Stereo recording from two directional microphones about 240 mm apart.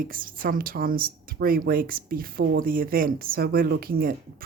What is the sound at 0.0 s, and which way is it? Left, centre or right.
A woman's voice, right.